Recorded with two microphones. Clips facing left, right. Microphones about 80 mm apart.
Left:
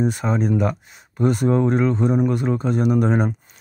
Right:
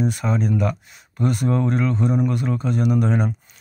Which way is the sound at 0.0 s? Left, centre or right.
Left.